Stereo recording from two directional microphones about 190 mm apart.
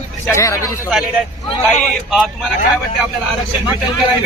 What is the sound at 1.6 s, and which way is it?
Speech, centre (ahead or behind).